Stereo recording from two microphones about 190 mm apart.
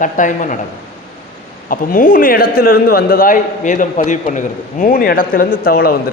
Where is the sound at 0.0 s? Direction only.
40° left (ahead or behind).